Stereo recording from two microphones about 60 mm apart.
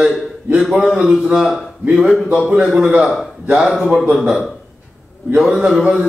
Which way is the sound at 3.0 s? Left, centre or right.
Centre.